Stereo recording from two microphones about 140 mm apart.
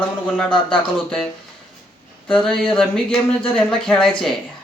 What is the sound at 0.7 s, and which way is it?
Speech, 5° left (ahead or behind).